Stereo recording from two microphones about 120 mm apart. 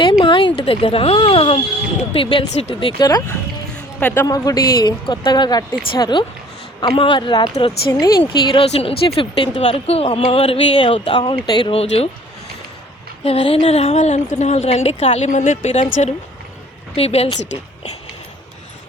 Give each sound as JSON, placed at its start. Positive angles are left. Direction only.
{"t": 0.0, "sound": "a woman's voice", "side_deg": 45}
{"t": 3.0, "sound": "speech", "side_deg": 30}
{"t": 3.8, "sound": "music", "side_deg": 20}
{"t": 4.3, "sound": "speech", "side_deg": 30}
{"t": 8.6, "sound": "a woman's voice", "side_deg": 55}
{"t": 11.2, "sound": "speech", "side_deg": 35}
{"t": 11.7, "sound": "a woman's voice", "side_deg": 55}
{"t": 13.2, "sound": "a woman's voice", "side_deg": 55}
{"t": 16.9, "sound": "speech", "side_deg": 55}